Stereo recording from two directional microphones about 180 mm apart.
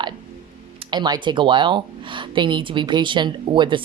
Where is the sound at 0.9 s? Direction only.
25° right (ahead or behind).